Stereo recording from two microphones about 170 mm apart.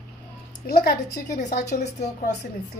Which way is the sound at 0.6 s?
65° left (ahead or behind).